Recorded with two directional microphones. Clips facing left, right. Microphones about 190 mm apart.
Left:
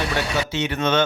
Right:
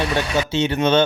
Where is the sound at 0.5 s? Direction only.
30° right (ahead or behind).